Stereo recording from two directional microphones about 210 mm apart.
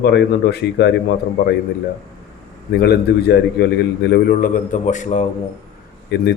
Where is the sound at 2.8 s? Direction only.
50° left (ahead or behind); by 5.2 s 35° left (ahead or behind).